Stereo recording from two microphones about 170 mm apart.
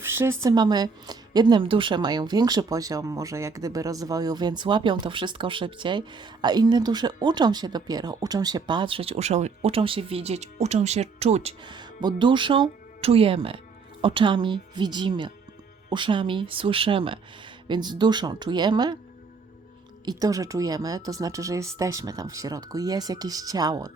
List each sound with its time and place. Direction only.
0.0 s a woman's voice: 15° right (ahead or behind); by 11.5 s 40° right (ahead or behind)
11.6 s a woman's voice: 25° right (ahead or behind)
20.1 s a woman's voice: 20° right (ahead or behind)